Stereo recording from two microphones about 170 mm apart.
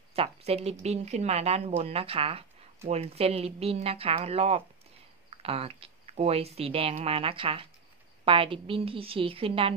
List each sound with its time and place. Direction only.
0.1 s a woman's voice: 35° right (ahead or behind)